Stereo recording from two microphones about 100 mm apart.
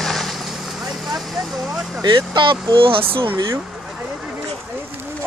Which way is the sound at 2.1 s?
50° right (ahead or behind).